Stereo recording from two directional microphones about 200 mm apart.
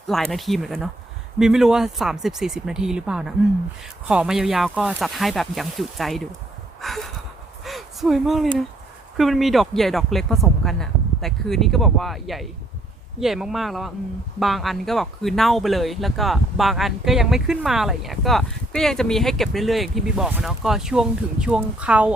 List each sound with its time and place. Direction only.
0.1 s speech: centre (ahead or behind)
6.8 s a sound: centre (ahead or behind)
7.6 s gasp: centre (ahead or behind)
9.1 s speech: centre (ahead or behind)